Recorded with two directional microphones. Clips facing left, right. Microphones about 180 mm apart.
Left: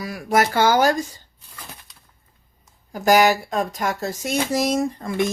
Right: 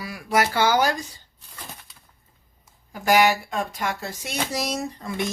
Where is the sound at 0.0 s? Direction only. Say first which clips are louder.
Left 3 dB; 45° left (ahead or behind).